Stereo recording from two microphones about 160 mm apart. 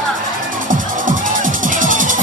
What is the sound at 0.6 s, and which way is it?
Music, 55° right (ahead or behind).